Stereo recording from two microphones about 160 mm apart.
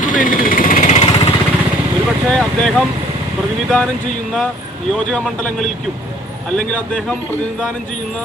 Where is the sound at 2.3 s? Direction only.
5° left (ahead or behind).